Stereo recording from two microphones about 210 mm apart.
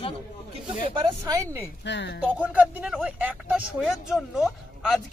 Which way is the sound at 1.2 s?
15° right (ahead or behind).